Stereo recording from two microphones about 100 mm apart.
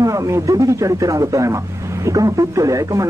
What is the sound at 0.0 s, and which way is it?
Speech, 35° right (ahead or behind).